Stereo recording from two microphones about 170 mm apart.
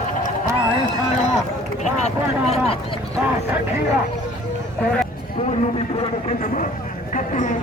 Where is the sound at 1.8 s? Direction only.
40° left (ahead or behind).